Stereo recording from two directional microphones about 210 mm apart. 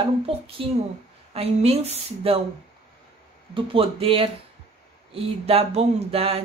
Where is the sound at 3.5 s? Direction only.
25° right (ahead or behind).